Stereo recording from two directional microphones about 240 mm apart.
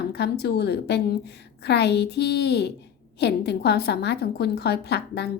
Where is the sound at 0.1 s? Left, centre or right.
Left.